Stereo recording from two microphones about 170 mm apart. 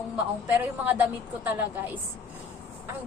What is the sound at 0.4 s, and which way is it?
A woman's voice, 10° right (ahead or behind).